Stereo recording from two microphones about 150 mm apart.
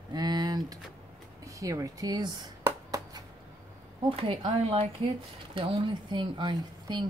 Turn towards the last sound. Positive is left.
turn(degrees=-30)  # may be behind; listen again after turning